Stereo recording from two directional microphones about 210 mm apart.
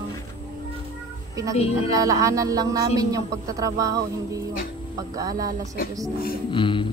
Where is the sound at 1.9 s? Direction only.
15° right (ahead or behind).